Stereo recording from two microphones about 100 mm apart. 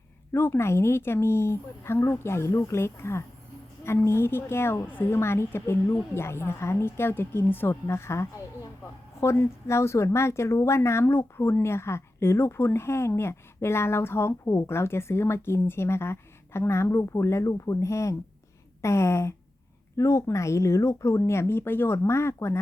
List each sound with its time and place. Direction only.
0.3 s speech: 25° left (ahead or behind)